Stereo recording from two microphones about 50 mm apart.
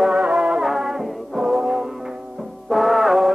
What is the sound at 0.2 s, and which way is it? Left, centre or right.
Music, centre.